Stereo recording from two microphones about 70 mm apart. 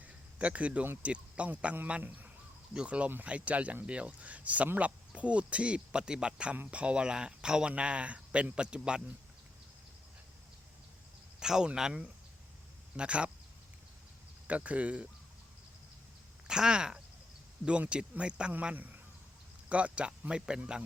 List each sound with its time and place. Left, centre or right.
0.0 s a sound: right
1.0 s a man's voice: centre
11.3 s speech: centre
14.4 s speech: right
16.5 s speech: centre